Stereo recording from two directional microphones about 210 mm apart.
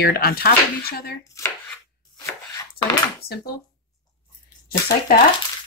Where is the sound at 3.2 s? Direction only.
50° left (ahead or behind).